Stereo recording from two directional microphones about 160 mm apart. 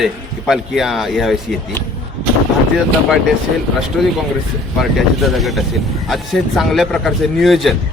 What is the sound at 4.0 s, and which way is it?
Speech, centre (ahead or behind).